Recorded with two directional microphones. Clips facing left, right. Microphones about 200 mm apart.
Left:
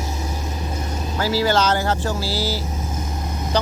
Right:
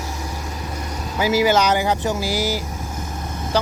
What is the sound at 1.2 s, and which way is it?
Speech, 15° right (ahead or behind).